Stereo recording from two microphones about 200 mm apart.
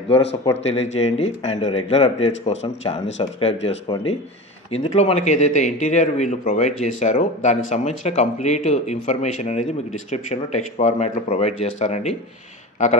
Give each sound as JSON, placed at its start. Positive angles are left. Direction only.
{"t": 0.7, "sound": "a man's voice", "side_deg": 35}